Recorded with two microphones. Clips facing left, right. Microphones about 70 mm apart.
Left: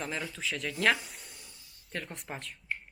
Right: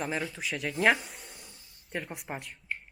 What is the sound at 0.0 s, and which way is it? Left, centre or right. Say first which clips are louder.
Speech: right 3 dB; centre.